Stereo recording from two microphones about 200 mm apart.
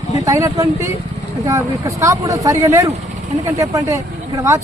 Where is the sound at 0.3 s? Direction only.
15° right (ahead or behind).